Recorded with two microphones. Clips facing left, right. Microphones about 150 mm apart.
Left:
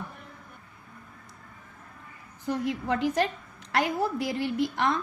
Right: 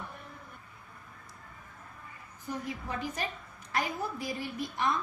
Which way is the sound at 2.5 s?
75° left (ahead or behind).